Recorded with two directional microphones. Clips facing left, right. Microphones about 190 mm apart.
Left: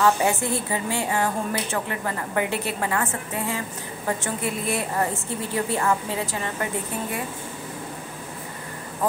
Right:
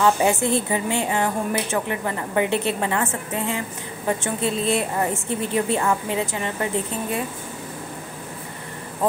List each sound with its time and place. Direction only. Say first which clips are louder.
0.0 s a woman's voice: right 2 dB; 20° right (ahead or behind)